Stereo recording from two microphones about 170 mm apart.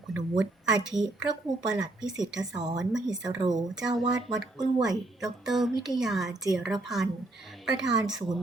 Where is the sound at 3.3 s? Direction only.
25° right (ahead or behind).